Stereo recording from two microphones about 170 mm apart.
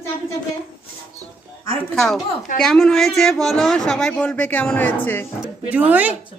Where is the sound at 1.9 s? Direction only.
5° left (ahead or behind).